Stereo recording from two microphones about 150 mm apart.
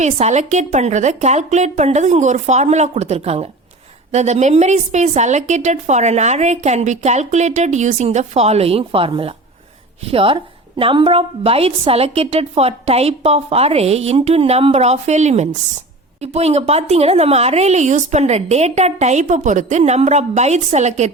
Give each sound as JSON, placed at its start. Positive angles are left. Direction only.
{"t": 0.0, "sound": "a woman's voice", "side_deg": -50}